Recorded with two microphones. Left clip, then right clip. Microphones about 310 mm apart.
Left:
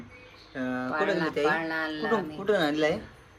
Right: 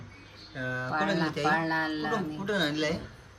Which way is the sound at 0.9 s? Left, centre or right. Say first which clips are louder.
Left 2 dB; centre.